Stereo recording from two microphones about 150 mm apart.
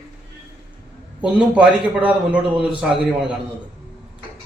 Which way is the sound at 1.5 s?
10° right (ahead or behind).